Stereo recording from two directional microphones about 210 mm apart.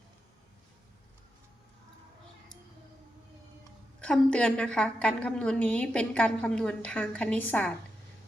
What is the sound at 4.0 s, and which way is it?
A woman's voice, 5° left (ahead or behind).